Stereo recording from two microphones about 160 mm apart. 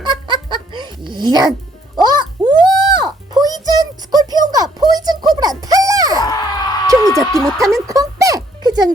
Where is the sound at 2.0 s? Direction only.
25° right (ahead or behind).